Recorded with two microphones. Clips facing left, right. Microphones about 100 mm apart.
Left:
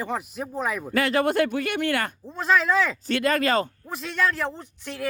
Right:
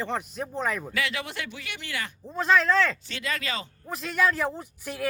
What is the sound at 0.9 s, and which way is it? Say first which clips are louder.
Speech: left 10 dB; 45° left (ahead or behind).